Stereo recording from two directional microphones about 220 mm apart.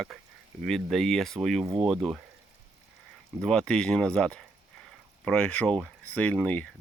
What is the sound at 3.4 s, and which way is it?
Speech, 5° left (ahead or behind).